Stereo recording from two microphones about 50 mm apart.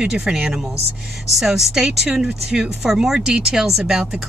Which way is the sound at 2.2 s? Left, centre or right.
Centre.